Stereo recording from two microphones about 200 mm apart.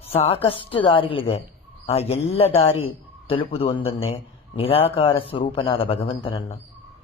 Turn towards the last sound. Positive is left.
turn(degrees=25)  # may be behind; listen again after turning